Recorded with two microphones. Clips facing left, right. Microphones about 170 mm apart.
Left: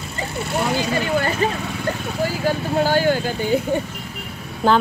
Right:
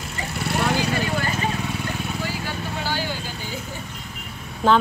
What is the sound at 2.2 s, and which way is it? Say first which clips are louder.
Vehicle: left 8 dB; 45° left (ahead or behind).